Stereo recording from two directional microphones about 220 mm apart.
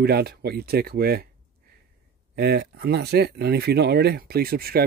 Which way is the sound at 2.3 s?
50° right (ahead or behind).